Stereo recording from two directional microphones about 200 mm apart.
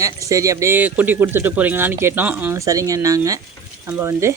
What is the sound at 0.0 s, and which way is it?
Speech, 15° right (ahead or behind).